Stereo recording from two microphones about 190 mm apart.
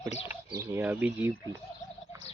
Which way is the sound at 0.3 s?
15° right (ahead or behind).